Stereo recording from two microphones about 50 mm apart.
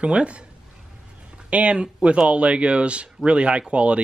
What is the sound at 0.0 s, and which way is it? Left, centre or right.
Speech, right.